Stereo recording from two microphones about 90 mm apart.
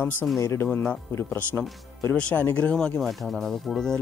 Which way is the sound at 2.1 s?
15° left (ahead or behind).